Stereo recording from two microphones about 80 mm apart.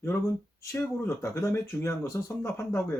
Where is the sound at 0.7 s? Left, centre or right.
Left.